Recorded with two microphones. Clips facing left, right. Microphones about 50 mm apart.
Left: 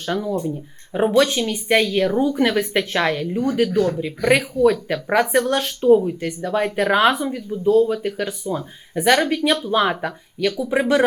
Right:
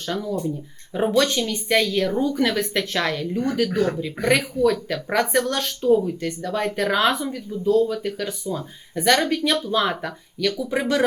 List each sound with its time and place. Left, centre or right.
0.0 s speech: centre
3.7 s speech: centre
4.3 s speech: centre